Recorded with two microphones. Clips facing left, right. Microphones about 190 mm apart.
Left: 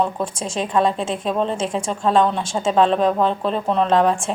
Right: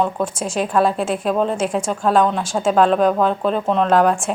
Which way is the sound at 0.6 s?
5° right (ahead or behind).